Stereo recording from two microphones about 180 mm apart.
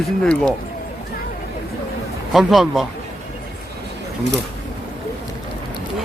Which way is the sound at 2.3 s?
Centre (ahead or behind).